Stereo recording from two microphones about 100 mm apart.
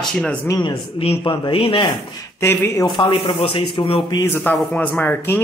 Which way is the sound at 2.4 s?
20° left (ahead or behind).